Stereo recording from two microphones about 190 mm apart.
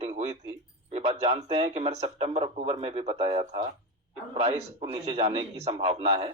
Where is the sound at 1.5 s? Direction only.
30° right (ahead or behind).